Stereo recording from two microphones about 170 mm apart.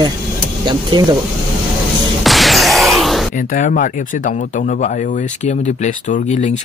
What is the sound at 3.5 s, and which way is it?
Speech, 55° left (ahead or behind).